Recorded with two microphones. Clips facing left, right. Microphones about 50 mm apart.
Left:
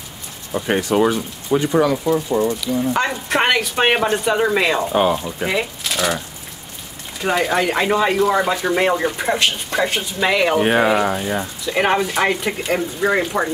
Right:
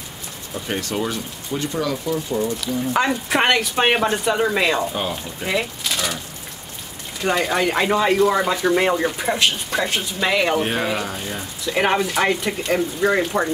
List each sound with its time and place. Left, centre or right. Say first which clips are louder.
0.5 s speech: left 7 dB; left
0.7 s speech: left 8 dB; centre
2.9 s speech: right 3 dB; centre
4.8 s speech: left 8 dB; left
5.5 s speech: right 1 dB; centre
7.2 s speech: left 2 dB; centre
10.6 s speech: left 7 dB; left
11.6 s speech: left 1 dB; centre